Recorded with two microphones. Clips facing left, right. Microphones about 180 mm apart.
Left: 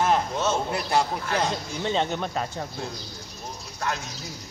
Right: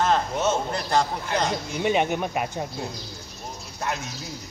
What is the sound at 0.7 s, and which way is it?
Speech, 10° left (ahead or behind).